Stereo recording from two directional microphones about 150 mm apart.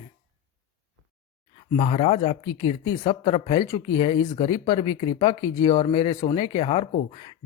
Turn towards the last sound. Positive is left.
turn(degrees=35)  # may be behind; listen again after turning